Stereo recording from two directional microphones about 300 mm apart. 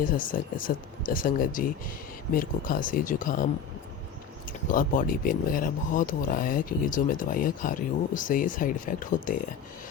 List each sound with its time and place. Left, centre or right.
0.0 s speech: left
4.7 s speech: left